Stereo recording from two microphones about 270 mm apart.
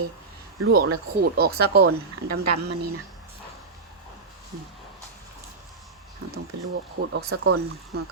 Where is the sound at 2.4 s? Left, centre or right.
Right.